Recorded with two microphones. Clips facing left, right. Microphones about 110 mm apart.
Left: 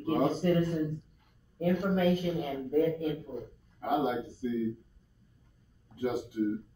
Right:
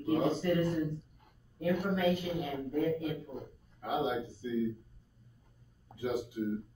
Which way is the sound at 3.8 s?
50° left (ahead or behind).